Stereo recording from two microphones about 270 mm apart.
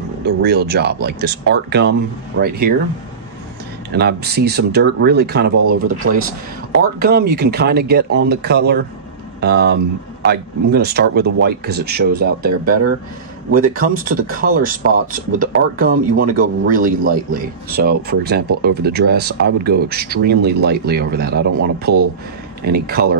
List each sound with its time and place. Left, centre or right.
0.2 s speech: right
3.9 s speech: right